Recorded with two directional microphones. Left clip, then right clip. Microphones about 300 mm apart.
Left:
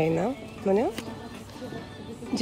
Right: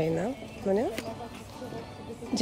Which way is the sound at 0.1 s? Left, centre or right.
Left.